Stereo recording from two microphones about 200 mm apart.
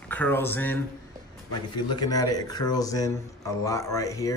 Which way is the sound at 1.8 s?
20° left (ahead or behind).